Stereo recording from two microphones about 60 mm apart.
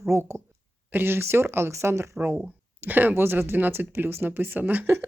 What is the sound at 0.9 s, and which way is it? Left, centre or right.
Speech, right.